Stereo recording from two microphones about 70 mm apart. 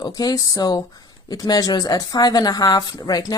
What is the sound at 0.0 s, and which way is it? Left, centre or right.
Speech, left.